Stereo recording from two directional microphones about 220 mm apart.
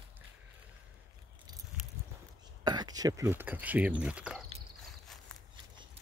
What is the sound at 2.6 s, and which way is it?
Speech, 20° right (ahead or behind).